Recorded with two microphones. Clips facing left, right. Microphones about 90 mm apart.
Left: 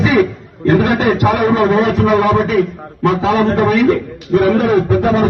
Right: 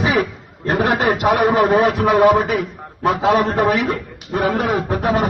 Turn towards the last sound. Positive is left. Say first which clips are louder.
# left 5 dB
turn(degrees=-20)  # may be behind; listen again after turning